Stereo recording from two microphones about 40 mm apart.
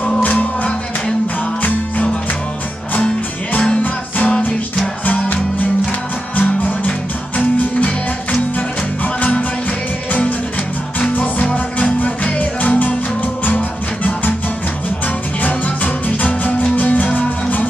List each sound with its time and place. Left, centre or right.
0.2 s music: left
6.3 s music: left
11.0 s music: left
15.4 s music: left